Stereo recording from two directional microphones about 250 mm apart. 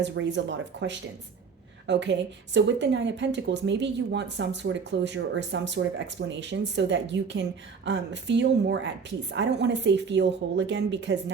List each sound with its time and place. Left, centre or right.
0.0 s speech: right